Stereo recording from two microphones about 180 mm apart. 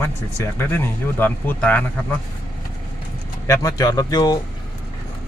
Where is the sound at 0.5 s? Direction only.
10° left (ahead or behind).